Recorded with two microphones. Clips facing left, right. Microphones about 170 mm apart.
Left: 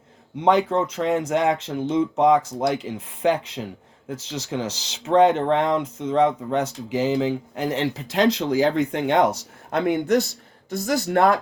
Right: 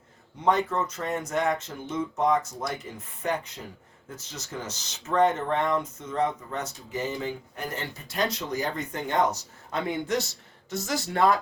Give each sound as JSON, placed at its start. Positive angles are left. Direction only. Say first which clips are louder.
{"t": 0.4, "sound": "speech", "louder": "left 6 dB", "side_deg": 90}
{"t": 9.8, "sound": "speech", "louder": "left 9 dB", "side_deg": 65}